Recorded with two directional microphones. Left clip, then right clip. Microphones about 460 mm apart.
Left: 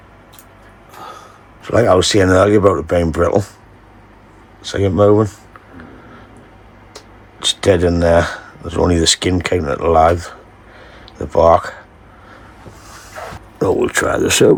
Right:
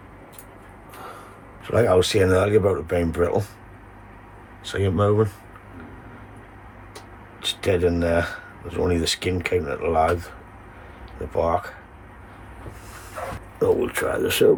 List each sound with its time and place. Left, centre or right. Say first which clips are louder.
1.6 s speech: left 6 dB; centre
4.6 s speech: left 9 dB; centre
7.3 s speech: left 9 dB; centre
13.6 s speech: left 6 dB; left